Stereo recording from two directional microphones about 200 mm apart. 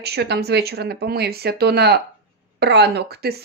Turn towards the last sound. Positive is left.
turn(degrees=-50)  # may be behind; listen again after turning